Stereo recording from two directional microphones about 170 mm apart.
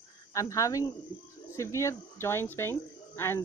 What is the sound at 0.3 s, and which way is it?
Speech, 20° left (ahead or behind).